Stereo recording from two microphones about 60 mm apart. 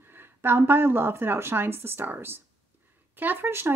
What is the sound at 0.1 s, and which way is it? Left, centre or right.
Speech, right.